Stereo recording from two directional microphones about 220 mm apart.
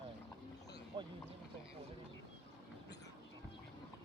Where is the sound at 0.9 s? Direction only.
20° right (ahead or behind).